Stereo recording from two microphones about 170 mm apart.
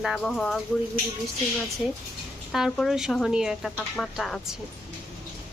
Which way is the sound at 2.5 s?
Centre (ahead or behind).